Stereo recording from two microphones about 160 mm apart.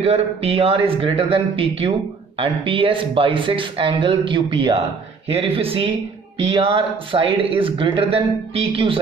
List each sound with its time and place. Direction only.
0.0 s speech: 40° right (ahead or behind)